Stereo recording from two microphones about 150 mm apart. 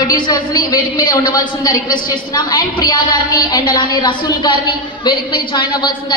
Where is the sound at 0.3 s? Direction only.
25° left (ahead or behind).